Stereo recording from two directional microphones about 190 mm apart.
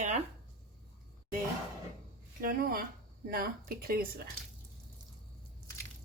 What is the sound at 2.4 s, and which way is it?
A woman's voice, 50° right (ahead or behind).